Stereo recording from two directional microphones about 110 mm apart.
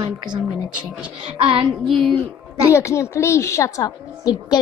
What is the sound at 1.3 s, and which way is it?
Speech, 55° right (ahead or behind).